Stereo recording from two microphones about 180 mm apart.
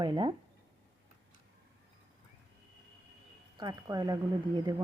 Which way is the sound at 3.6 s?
20° right (ahead or behind).